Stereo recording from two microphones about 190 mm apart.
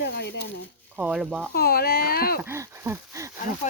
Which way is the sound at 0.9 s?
5° right (ahead or behind).